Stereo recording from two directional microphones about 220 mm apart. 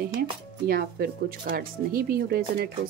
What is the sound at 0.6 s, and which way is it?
Speech, 45° right (ahead or behind).